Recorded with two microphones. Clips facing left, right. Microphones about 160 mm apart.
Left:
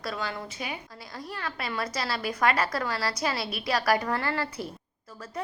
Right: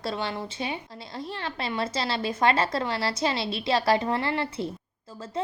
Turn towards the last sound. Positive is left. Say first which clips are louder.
# right 3 dB
turn(degrees=-25)  # may be behind; listen again after turning